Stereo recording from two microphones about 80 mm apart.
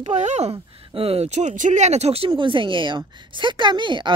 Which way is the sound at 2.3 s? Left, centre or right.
Right.